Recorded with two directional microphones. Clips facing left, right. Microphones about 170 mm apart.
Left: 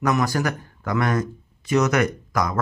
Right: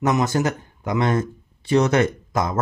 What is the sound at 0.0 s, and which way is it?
Speech, 25° right (ahead or behind).